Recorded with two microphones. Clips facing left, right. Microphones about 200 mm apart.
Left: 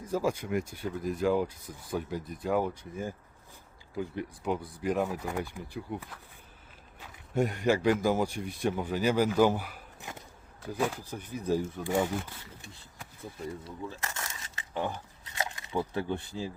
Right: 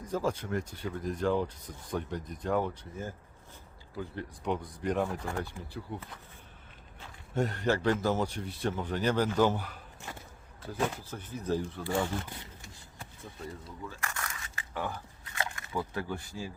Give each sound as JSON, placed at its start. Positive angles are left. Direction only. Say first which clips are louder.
{"t": 0.1, "sound": "speech", "louder": "left 2 dB", "side_deg": 10}
{"t": 4.4, "sound": "speech", "louder": "left 1 dB", "side_deg": 5}
{"t": 7.3, "sound": "speech", "louder": "left 3 dB", "side_deg": 10}
{"t": 11.0, "sound": "speech", "louder": "left 2 dB", "side_deg": 15}
{"t": 13.8, "sound": "crumpling", "louder": "even", "side_deg": 25}